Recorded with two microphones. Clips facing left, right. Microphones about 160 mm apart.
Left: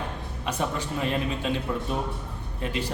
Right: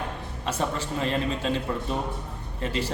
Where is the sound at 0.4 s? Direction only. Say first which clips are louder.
Right 1 dB; 5° left (ahead or behind).